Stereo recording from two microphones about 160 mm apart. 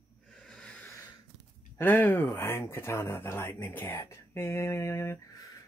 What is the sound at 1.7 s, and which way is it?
Speech, 10° left (ahead or behind).